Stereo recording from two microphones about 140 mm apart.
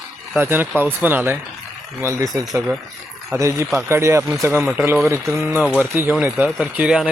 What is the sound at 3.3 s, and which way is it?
Speech, 20° right (ahead or behind).